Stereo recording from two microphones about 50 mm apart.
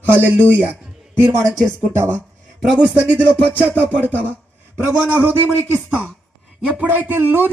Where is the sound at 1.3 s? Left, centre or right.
Right.